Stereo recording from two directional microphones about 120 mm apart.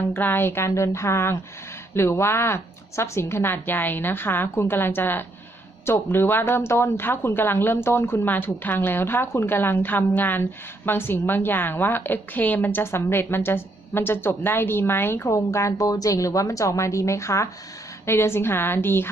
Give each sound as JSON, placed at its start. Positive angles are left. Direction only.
{"t": 0.1, "sound": "a woman's voice", "side_deg": 15}